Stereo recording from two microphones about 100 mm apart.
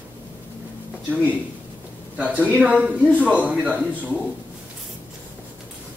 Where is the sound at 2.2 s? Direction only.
15° right (ahead or behind).